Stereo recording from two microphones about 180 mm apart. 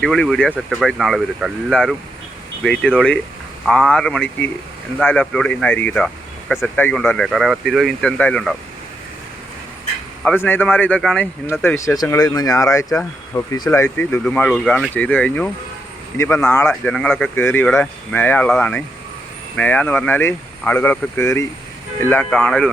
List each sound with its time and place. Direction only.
0.0 s speech: 5° left (ahead or behind)
10.2 s speech: 10° left (ahead or behind)